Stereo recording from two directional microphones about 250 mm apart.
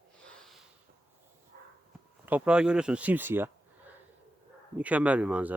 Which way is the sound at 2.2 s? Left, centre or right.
Centre.